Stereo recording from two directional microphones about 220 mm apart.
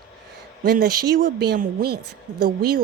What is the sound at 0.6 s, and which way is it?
Speech, 45° right (ahead or behind).